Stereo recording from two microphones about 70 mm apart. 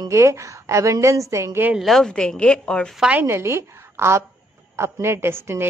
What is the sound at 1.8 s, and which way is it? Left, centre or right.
A woman's voice, centre.